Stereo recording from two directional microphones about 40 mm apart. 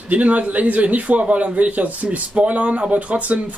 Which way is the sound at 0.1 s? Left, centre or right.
Right.